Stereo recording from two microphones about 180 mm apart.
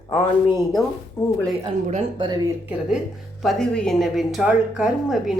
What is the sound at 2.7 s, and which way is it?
Ding, 5° right (ahead or behind).